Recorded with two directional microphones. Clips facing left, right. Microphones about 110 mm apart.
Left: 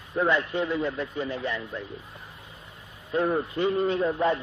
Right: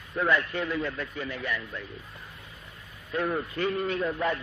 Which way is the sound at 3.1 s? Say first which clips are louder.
Left 4 dB; 25° left (ahead or behind).